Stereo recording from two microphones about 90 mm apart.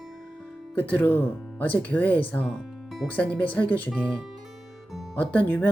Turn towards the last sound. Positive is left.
turn(degrees=15)  # may be behind; listen again after turning